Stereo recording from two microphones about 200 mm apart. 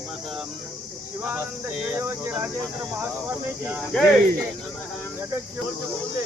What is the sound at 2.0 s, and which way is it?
Speech, 10° right (ahead or behind).